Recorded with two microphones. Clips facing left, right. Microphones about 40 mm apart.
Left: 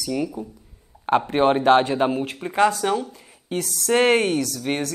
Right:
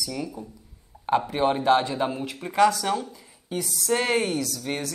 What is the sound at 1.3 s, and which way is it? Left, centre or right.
Speech, left.